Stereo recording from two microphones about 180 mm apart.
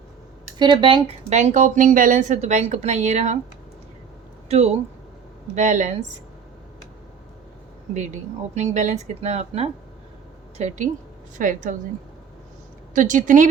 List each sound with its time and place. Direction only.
0.6 s speech: 25° right (ahead or behind)
4.4 s speech: 35° right (ahead or behind)
7.9 s a woman's voice: 40° right (ahead or behind)
12.9 s a woman's voice: 45° right (ahead or behind)